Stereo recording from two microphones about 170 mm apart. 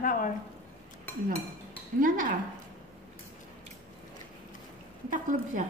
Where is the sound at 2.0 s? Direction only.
50° right (ahead or behind).